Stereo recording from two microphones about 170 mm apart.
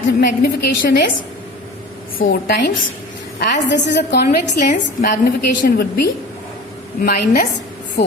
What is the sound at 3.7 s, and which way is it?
Speech, 90° left.